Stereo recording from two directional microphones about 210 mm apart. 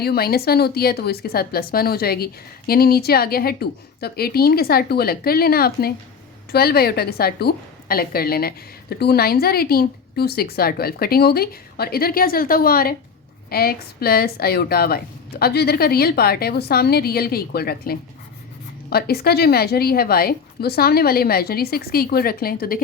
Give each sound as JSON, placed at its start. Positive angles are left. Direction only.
{"t": 0.0, "sound": "a woman's voice", "side_deg": 45}